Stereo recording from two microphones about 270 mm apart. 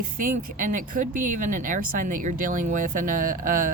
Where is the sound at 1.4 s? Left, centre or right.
Right.